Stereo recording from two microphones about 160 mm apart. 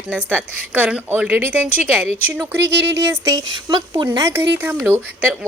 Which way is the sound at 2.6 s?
90° right.